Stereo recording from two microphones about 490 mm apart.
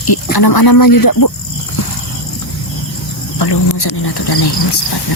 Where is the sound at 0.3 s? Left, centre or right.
Left.